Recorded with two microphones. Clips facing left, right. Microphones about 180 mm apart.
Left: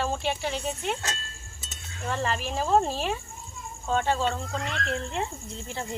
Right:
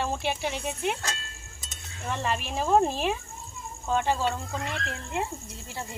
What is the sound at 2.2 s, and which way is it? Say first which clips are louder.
Speech: even; 15° right (ahead or behind).